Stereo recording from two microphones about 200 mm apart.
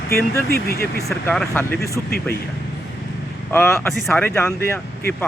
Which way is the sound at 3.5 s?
10° left (ahead or behind).